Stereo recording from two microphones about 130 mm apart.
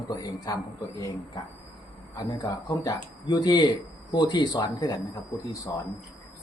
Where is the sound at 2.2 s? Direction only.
25° left (ahead or behind).